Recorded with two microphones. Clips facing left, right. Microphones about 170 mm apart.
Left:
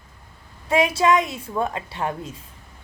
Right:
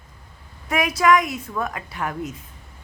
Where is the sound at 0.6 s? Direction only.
25° left (ahead or behind).